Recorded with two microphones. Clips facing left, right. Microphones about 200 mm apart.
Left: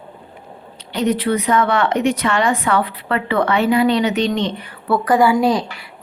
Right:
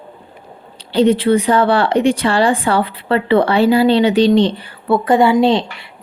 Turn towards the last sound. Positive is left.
turn(degrees=-25)  # may be behind; listen again after turning